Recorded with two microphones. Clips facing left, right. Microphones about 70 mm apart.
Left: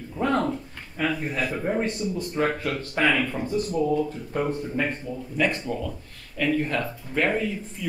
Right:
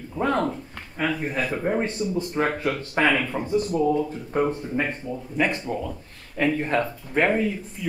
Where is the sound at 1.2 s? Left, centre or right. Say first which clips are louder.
Right 2 dB; right.